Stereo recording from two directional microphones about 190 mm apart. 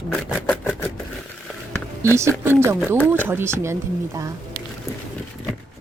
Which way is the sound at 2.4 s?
10° right (ahead or behind).